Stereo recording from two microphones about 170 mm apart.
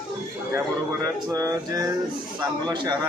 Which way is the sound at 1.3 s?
20° right (ahead or behind).